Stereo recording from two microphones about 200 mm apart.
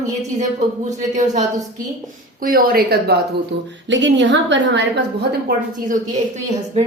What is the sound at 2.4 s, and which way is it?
Speech, 45° right (ahead or behind).